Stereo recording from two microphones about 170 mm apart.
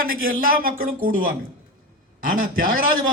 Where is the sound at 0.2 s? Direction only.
55° right (ahead or behind).